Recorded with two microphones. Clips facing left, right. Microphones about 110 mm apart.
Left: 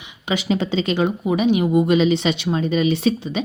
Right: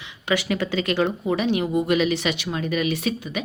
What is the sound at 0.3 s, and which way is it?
A woman's voice, 20° left (ahead or behind).